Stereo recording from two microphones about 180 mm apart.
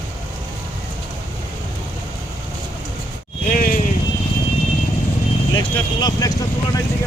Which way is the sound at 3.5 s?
50° left (ahead or behind).